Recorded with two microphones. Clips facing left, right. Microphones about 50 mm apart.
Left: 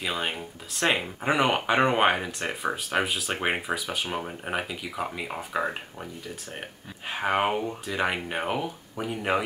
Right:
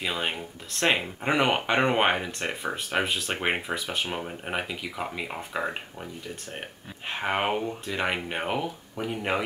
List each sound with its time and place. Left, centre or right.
0.0 s speech: centre
7.1 s speech: centre